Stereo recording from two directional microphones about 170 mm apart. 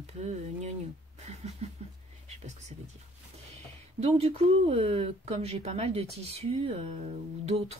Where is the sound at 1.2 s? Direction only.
40° right (ahead or behind).